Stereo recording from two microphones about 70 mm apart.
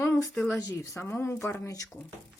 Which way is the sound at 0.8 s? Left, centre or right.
Left.